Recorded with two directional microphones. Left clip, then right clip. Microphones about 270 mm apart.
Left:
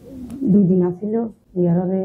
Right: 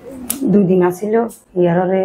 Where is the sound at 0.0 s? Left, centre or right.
Right.